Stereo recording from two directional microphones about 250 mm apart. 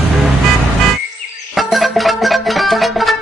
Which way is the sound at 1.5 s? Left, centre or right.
Centre.